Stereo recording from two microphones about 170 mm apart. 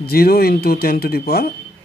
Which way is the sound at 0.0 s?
65° left (ahead or behind).